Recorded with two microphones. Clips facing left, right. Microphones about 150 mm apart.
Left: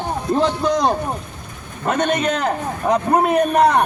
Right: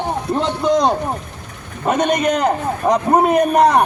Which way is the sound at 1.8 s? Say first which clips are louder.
Right 3 dB; 10° right (ahead or behind).